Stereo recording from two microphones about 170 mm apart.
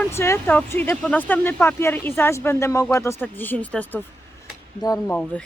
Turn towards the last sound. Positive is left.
turn(degrees=5)  # may be behind; listen again after turning